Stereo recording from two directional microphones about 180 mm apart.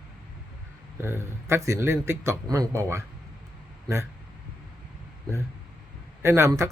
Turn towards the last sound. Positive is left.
turn(degrees=-15)  # may be behind; listen again after turning